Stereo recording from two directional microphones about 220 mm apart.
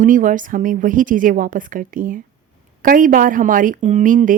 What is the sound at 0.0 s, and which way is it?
A woman's voice, 35° right (ahead or behind).